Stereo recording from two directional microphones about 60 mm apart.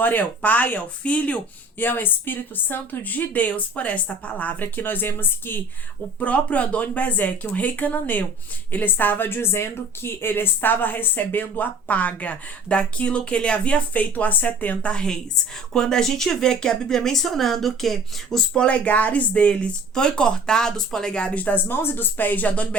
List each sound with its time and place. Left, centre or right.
0.0 s speech: left
1.8 s speech: left
6.1 s speech: left
21.4 s speech: left